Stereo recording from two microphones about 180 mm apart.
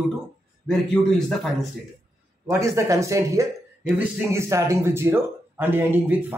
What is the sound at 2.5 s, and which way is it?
Speech, 15° right (ahead or behind).